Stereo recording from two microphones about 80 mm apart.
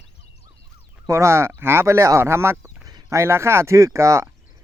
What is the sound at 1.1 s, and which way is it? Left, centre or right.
Speech, right.